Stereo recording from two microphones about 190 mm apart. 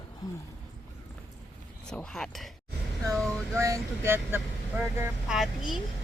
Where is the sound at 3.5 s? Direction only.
15° right (ahead or behind).